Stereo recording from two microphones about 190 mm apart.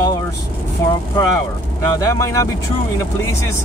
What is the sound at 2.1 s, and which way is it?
Speech, 15° left (ahead or behind).